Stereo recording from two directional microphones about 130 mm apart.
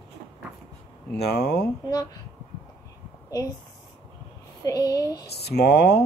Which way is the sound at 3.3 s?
25° left (ahead or behind).